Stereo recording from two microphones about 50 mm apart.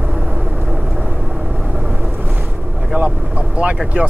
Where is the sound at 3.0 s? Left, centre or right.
Right.